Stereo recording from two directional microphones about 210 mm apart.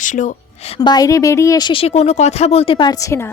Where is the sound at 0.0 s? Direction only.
35° left (ahead or behind).